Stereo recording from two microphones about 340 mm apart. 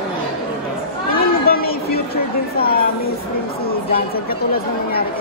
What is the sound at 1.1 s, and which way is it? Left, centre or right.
Chatter, left.